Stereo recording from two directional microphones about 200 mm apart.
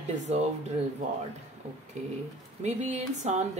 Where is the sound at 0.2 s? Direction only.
35° right (ahead or behind).